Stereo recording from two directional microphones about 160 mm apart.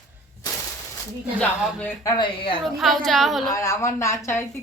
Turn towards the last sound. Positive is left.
turn(degrees=15)  # may be behind; listen again after turning